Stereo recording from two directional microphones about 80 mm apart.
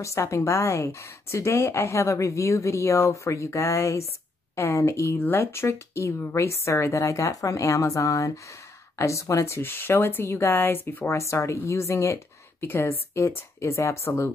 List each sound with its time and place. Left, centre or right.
0.0 s a woman's voice: left
11.1 s a woman's voice: left